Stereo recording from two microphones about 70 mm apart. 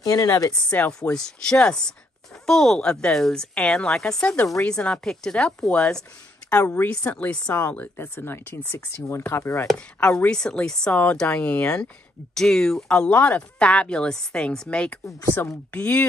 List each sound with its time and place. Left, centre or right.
0.0 s speech: left
0.7 s speech: left
1.1 s speech: centre
6.7 s speech: left
9.9 s speech: centre